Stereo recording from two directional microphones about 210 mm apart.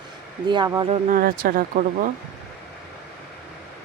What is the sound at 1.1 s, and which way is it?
Speech, 45° right (ahead or behind).